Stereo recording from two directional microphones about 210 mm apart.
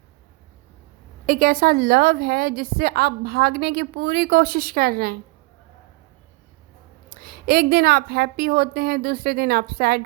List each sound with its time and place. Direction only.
1.3 s a woman's voice: 45° right (ahead or behind)
7.1 s a woman's voice: 45° right (ahead or behind)